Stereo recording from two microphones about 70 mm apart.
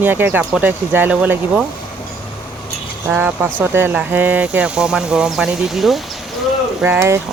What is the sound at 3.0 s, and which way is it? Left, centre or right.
Speech, right.